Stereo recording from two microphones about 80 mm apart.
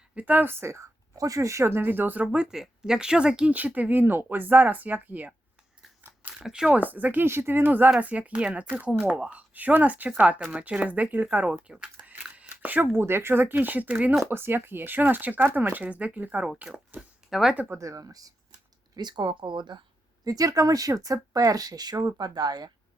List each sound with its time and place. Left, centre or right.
0.1 s speech: centre
2.2 s speech: centre
6.4 s speech: centre
6.7 s speech: right
17.2 s speech: centre
17.7 s speech: right
18.9 s speech: right
20.2 s speech: right